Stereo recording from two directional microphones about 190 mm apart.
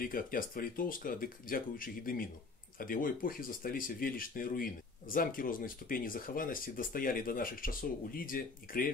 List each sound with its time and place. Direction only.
0.0 s speech: 50° left (ahead or behind)